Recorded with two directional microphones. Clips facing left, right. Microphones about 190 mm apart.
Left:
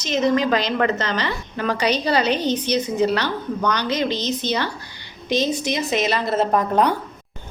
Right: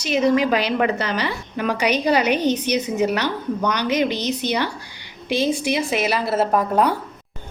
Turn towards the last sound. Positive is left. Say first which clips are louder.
# even
turn(degrees=-5)  # may be behind; listen again after turning